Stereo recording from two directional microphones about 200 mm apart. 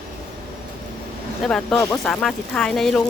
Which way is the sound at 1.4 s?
5° left (ahead or behind).